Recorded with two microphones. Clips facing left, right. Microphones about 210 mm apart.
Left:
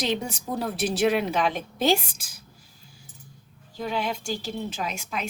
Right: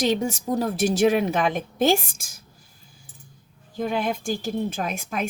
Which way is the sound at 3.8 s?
50° right (ahead or behind).